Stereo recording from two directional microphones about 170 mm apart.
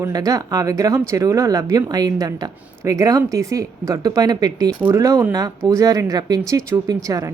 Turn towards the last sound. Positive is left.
turn(degrees=-20)  # may be behind; listen again after turning